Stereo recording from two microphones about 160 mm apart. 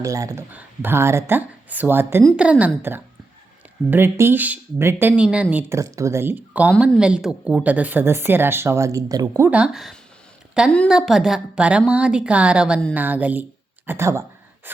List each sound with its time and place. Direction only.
0.0 s speech: 20° right (ahead or behind)
9.5 s a woman's voice: 5° right (ahead or behind)
13.8 s a sound: 15° right (ahead or behind)